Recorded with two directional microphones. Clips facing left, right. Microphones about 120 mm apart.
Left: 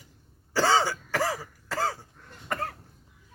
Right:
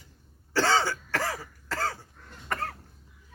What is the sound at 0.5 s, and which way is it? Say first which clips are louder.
Throat clearing: left 1 dB; 10° left (ahead or behind).